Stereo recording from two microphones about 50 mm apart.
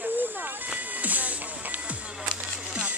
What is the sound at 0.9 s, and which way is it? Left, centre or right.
Music, right.